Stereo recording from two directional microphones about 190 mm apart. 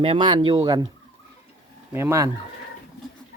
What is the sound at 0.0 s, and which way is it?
Speech, 25° right (ahead or behind).